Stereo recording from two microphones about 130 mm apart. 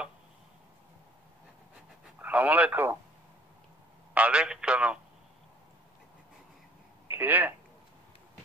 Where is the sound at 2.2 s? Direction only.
10° right (ahead or behind).